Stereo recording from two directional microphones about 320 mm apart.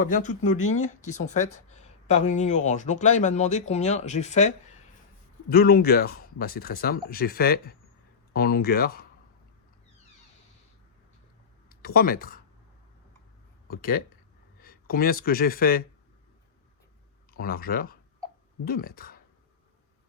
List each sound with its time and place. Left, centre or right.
0.0 s speech: left
11.7 s speech: left
13.7 s speech: left
17.3 s speech: left